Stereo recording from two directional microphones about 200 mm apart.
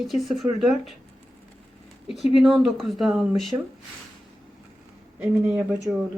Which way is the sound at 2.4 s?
Centre (ahead or behind).